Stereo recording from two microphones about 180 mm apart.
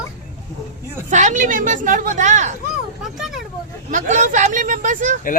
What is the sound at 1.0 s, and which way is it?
A woman's voice, 45° right (ahead or behind).